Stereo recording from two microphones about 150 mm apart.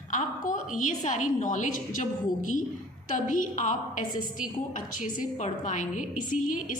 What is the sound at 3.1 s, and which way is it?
A woman's voice, 55° left (ahead or behind).